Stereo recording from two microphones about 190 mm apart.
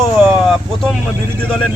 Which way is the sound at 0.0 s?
Centre (ahead or behind).